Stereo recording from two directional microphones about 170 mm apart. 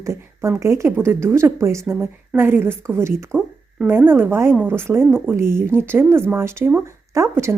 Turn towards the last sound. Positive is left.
turn(degrees=-15)  # may be behind; listen again after turning